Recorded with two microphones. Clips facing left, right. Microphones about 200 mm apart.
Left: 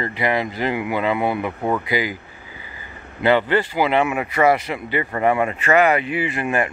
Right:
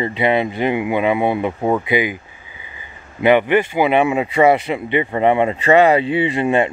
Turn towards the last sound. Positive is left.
turn(degrees=-25)  # may be behind; listen again after turning